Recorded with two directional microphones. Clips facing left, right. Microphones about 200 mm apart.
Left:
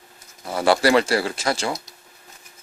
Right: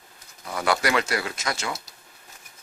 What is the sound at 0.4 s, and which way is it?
Speech, 30° left (ahead or behind).